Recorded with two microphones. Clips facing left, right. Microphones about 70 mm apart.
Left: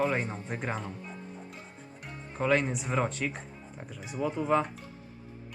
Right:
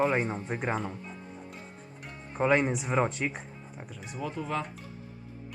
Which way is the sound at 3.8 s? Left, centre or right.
Centre.